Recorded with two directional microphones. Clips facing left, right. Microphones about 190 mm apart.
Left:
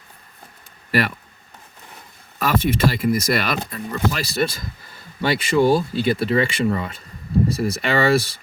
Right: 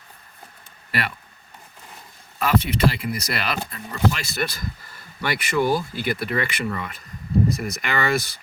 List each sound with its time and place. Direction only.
0.9 s speech: 40° left (ahead or behind)
2.4 s speech: 40° left (ahead or behind)